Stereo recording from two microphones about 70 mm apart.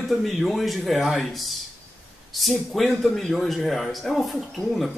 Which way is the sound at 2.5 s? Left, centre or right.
Centre.